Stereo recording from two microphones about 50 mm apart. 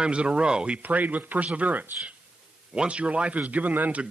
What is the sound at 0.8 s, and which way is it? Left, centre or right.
Speech, right.